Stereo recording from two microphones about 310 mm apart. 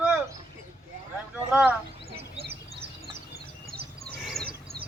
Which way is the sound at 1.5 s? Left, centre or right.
Centre.